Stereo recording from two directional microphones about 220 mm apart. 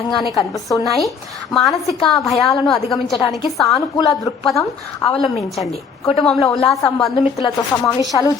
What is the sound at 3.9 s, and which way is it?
Speech, 20° left (ahead or behind).